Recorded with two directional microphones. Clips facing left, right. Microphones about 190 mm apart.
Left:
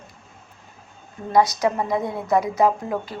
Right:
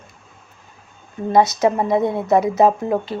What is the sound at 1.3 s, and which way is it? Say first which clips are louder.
Speech: right 3 dB; 25° right (ahead or behind).